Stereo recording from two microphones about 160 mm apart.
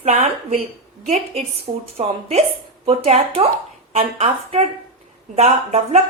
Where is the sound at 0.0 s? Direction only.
45° right (ahead or behind).